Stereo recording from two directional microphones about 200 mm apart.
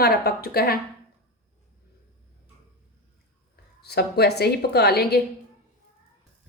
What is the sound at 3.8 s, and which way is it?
Speech, 55° left (ahead or behind).